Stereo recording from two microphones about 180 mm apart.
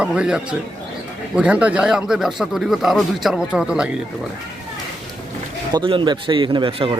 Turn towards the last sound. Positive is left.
turn(degrees=-30)  # may be behind; listen again after turning